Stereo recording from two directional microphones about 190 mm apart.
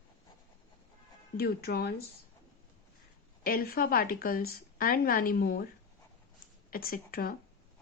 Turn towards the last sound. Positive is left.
turn(degrees=50)  # may be behind; listen again after turning